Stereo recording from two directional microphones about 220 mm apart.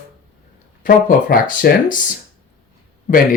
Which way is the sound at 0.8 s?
40° left (ahead or behind).